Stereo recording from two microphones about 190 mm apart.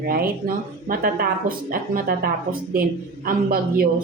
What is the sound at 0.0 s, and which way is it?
Speech, 50° right (ahead or behind).